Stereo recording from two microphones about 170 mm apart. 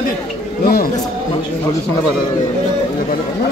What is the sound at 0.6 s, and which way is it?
Speech, 60° left (ahead or behind).